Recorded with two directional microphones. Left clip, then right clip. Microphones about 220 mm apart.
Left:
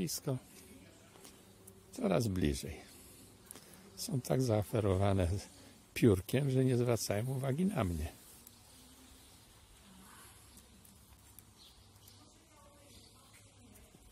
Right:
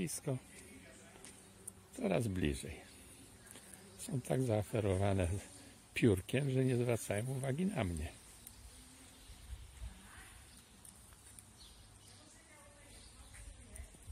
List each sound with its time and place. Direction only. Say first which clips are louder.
0.0 s speech: left 2 dB; 10° left (ahead or behind)
2.0 s speech: left 3 dB; 15° left (ahead or behind)
4.0 s speech: left 3 dB; 15° left (ahead or behind)